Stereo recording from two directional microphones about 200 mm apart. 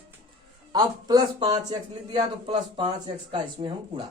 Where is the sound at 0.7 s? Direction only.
20° right (ahead or behind).